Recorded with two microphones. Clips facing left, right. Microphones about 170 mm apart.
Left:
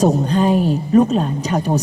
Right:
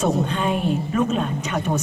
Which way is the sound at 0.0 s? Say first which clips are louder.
Left 6 dB; 35° left (ahead or behind).